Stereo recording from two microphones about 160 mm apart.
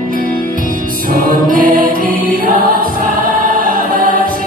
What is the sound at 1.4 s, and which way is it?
Music, 60° right (ahead or behind).